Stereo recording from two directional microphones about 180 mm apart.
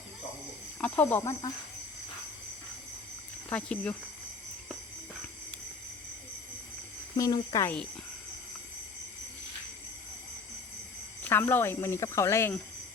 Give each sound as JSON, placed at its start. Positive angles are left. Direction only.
{"t": 0.8, "sound": "speech", "side_deg": 10}
{"t": 3.5, "sound": "speech", "side_deg": 5}
{"t": 7.2, "sound": "speech", "side_deg": 20}
{"t": 11.2, "sound": "speech", "side_deg": 10}